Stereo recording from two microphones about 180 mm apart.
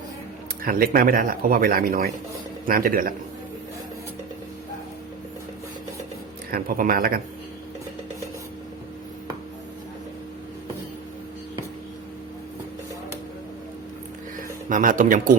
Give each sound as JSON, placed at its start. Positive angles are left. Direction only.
{"t": 0.6, "sound": "speech", "side_deg": -50}
{"t": 6.5, "sound": "speech", "side_deg": -55}
{"t": 14.7, "sound": "speech", "side_deg": -45}